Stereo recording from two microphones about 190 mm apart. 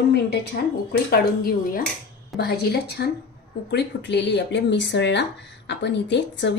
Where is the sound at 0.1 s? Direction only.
60° left (ahead or behind).